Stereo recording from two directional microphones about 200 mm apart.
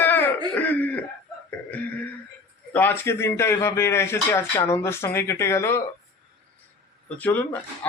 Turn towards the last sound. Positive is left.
turn(degrees=10)  # may be behind; listen again after turning